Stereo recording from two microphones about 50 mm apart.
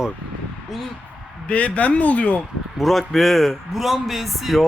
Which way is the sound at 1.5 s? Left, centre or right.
Left.